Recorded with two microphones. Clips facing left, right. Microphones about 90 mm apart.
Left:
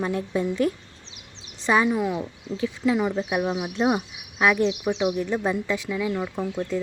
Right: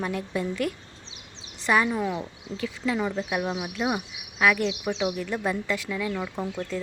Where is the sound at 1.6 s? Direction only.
20° left (ahead or behind).